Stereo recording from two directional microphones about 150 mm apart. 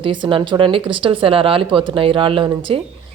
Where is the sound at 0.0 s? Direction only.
35° right (ahead or behind).